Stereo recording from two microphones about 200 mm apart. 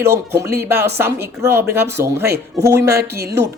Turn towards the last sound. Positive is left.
turn(degrees=-55)  # may be behind; listen again after turning